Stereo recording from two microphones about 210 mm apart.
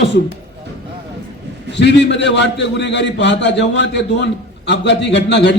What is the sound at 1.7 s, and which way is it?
A man's voice, 55° left (ahead or behind).